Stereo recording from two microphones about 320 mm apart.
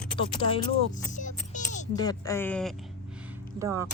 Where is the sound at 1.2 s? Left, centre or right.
Left.